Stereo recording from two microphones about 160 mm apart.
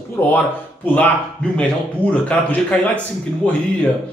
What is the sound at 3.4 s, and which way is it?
Speech, 10° left (ahead or behind).